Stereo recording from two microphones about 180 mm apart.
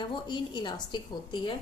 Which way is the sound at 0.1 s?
25° left (ahead or behind).